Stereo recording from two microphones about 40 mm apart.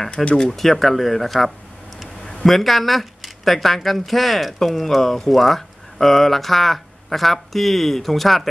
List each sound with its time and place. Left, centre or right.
0.1 s speech: left
0.5 s speech: centre